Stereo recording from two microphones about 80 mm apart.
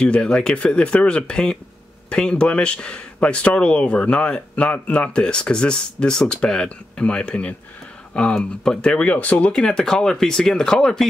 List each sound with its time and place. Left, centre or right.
0.0 s speech: centre